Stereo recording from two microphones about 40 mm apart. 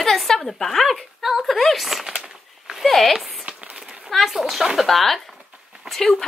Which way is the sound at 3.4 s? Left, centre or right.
Right.